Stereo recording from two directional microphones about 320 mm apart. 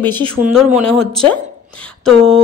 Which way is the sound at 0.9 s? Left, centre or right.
Centre.